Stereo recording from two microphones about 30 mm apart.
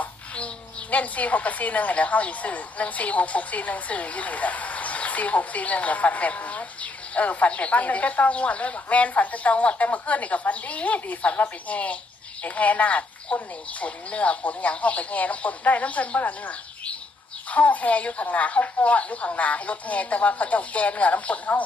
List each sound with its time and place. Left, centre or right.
0.3 s a woman's voice: left
11.2 s a woman's voice: left
11.7 s a woman's voice: left